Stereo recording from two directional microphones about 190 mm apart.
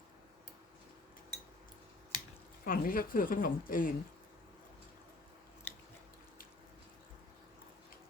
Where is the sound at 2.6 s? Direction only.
50° left (ahead or behind).